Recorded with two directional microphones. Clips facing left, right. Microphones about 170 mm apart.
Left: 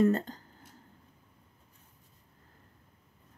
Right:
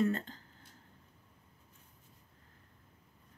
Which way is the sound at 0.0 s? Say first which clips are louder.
Left 6 dB; 45° left (ahead or behind).